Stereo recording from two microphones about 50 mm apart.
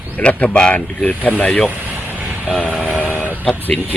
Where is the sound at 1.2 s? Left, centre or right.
Left.